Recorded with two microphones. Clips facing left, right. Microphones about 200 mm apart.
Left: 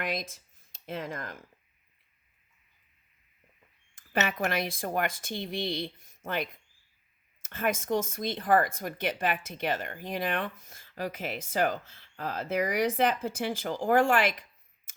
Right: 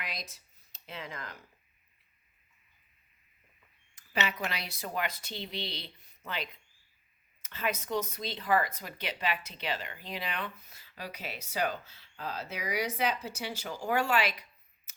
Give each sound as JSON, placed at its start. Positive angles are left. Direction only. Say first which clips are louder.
{"t": 0.0, "sound": "speech", "louder": "left 9 dB", "side_deg": 50}
{"t": 3.9, "sound": "speech", "louder": "left 4 dB", "side_deg": 50}
{"t": 14.9, "sound": "a sound", "louder": "left 2 dB", "side_deg": 50}